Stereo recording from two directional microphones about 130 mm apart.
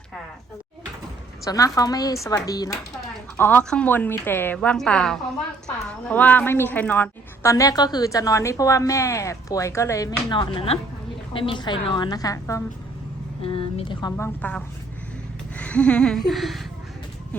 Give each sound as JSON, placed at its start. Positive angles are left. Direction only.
{"t": 1.5, "sound": "a woman's voice", "side_deg": 25}
{"t": 3.3, "sound": "a woman's voice", "side_deg": 15}
{"t": 7.5, "sound": "a woman's voice", "side_deg": 25}
{"t": 13.4, "sound": "speech", "side_deg": 45}
{"t": 14.2, "sound": "a woman's voice", "side_deg": 15}
{"t": 15.5, "sound": "a sound", "side_deg": 10}